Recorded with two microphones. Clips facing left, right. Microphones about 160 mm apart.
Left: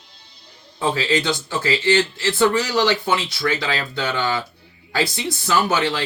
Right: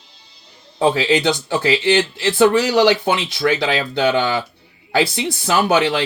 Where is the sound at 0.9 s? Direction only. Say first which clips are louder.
Right 4 dB; 15° right (ahead or behind).